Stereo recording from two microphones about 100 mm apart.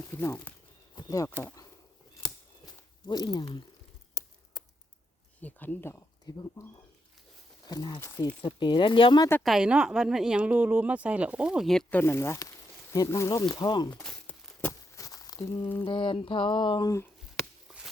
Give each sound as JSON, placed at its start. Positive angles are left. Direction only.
{"t": 0.1, "sound": "a sound", "side_deg": 20}
{"t": 3.1, "sound": "speech", "side_deg": 40}
{"t": 5.4, "sound": "speech", "side_deg": 15}
{"t": 5.9, "sound": "speech", "side_deg": 30}
{"t": 7.7, "sound": "speech", "side_deg": 45}
{"t": 8.4, "sound": "speech", "side_deg": 55}
{"t": 9.4, "sound": "speech", "side_deg": -5}
{"t": 11.9, "sound": "speech", "side_deg": 20}
{"t": 13.5, "sound": "speech", "side_deg": 45}
{"t": 13.9, "sound": "a sound", "side_deg": 10}
{"t": 14.9, "sound": "a sound", "side_deg": 35}
{"t": 15.8, "sound": "a sound", "side_deg": 60}